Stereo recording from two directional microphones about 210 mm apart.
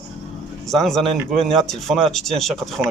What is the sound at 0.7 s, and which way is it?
Speech, centre (ahead or behind).